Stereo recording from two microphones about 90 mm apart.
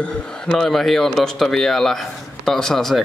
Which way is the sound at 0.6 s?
Centre (ahead or behind).